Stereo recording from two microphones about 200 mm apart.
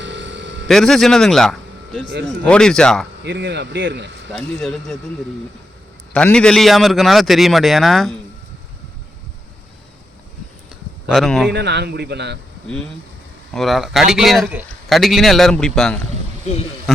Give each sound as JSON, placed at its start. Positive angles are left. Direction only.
{"t": 0.0, "sound": "a sound", "side_deg": -65}
{"t": 0.7, "sound": "speech", "side_deg": 0}
{"t": 3.2, "sound": "speech", "side_deg": -60}
{"t": 4.3, "sound": "speech", "side_deg": 5}
{"t": 6.1, "sound": "speech", "side_deg": 5}
{"t": 11.1, "sound": "speech", "side_deg": 0}
{"t": 11.5, "sound": "speech", "side_deg": -55}
{"t": 13.5, "sound": "speech", "side_deg": 0}